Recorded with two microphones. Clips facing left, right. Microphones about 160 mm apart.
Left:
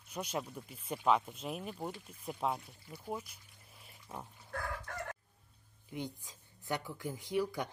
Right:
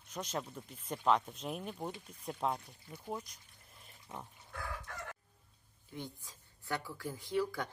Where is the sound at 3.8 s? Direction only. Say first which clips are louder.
Left 1 dB; 10° left (ahead or behind).